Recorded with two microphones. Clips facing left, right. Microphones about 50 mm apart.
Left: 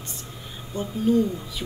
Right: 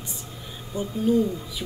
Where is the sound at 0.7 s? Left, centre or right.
Left.